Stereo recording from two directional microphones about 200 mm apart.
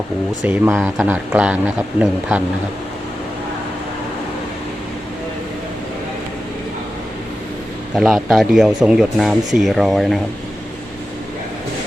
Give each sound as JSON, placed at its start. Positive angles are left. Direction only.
{"t": 0.4, "sound": "a man's voice", "side_deg": -10}
{"t": 7.9, "sound": "speech", "side_deg": 0}